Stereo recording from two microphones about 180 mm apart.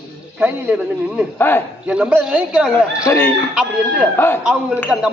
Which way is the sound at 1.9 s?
5° right (ahead or behind).